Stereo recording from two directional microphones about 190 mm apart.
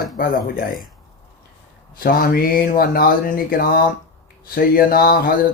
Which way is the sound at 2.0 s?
50° left (ahead or behind).